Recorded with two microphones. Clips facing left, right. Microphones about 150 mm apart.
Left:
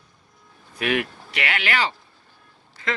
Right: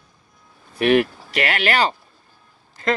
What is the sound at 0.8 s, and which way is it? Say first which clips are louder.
Speech: right 8 dB; 35° right (ahead or behind).